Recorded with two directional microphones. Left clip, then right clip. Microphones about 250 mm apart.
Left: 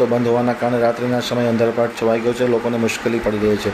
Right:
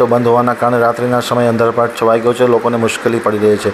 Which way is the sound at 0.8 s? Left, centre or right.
Centre.